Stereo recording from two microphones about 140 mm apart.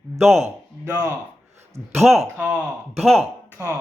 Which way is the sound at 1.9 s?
Centre (ahead or behind).